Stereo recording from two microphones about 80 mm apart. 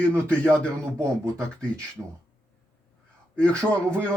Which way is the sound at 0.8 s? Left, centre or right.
Right.